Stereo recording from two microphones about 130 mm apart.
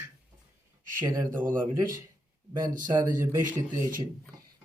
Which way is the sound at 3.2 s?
20° right (ahead or behind).